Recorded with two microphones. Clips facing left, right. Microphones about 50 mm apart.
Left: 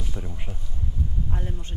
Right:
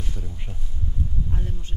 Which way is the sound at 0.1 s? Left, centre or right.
Left.